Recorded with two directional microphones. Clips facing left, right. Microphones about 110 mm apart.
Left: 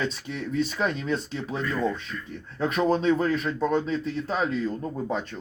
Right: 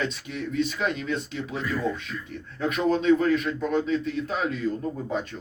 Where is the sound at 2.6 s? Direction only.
35° left (ahead or behind).